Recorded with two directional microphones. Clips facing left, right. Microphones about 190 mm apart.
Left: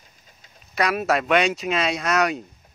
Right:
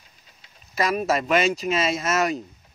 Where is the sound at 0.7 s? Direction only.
Centre (ahead or behind).